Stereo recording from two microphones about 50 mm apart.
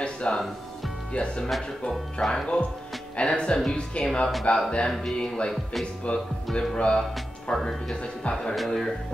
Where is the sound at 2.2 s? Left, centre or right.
Centre.